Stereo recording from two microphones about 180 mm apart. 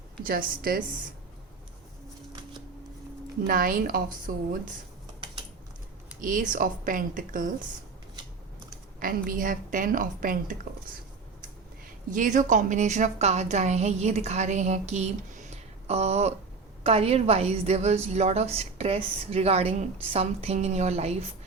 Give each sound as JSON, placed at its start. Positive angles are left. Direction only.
{"t": 0.2, "sound": "a woman's voice", "side_deg": -50}
{"t": 3.4, "sound": "a woman's voice", "side_deg": -50}
{"t": 6.1, "sound": "a woman's voice", "side_deg": -50}
{"t": 9.0, "sound": "a woman's voice", "side_deg": -50}
{"t": 12.1, "sound": "a woman's voice", "side_deg": -45}